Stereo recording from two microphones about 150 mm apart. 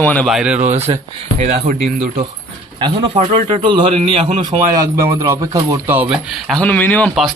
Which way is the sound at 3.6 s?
30° right (ahead or behind).